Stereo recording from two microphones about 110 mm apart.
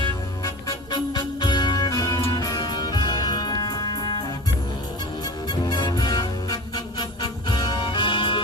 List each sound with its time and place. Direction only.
0.4 s music: 40° left (ahead or behind)
5.2 s music: 40° left (ahead or behind)